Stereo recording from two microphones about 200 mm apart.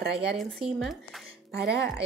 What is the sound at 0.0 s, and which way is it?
Speech, 55° right (ahead or behind).